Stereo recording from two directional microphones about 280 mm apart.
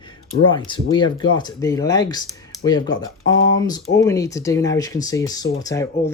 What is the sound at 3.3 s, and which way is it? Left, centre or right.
Speech, left.